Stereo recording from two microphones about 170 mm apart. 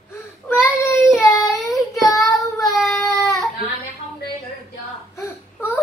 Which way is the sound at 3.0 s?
20° left (ahead or behind).